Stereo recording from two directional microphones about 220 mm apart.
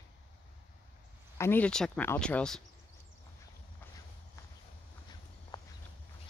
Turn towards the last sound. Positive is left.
turn(degrees=20)  # may be behind; listen again after turning